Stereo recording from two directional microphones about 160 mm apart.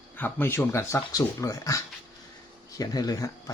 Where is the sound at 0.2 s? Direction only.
15° left (ahead or behind).